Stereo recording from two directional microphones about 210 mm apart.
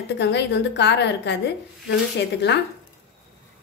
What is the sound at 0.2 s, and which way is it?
A woman's voice, 55° left (ahead or behind).